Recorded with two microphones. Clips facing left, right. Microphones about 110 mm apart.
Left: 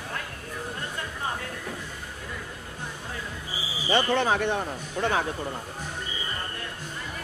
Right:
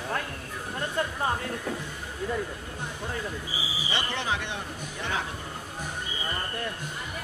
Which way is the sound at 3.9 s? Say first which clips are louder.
Left 8 dB; 50° left (ahead or behind).